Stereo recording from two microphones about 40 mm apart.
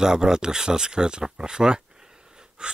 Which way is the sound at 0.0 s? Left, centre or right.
Centre.